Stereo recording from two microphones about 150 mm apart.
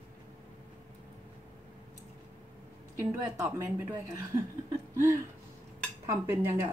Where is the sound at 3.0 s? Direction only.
15° right (ahead or behind).